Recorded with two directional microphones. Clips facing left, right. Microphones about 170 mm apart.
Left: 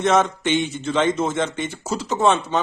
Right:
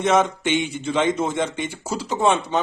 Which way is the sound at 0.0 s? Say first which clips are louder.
Even; 10° right (ahead or behind).